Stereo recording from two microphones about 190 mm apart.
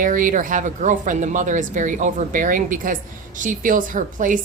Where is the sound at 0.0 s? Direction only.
45° right (ahead or behind).